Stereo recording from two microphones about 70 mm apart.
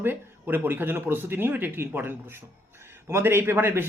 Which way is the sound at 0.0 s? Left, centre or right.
Right.